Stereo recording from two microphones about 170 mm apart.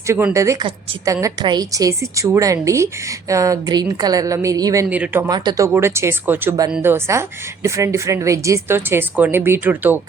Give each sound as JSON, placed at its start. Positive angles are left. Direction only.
{"t": 0.1, "sound": "a woman's voice", "side_deg": -15}
{"t": 5.3, "sound": "speech", "side_deg": -20}